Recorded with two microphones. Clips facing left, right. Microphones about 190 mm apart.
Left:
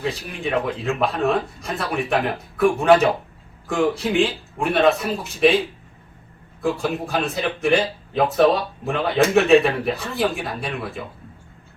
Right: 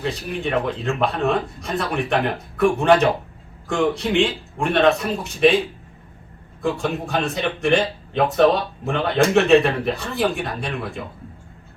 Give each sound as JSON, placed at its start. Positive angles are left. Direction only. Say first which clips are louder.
{"t": 0.0, "sound": "speech", "louder": "right 1 dB", "side_deg": 0}